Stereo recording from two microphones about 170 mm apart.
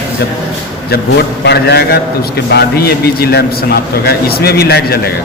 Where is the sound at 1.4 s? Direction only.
75° left (ahead or behind).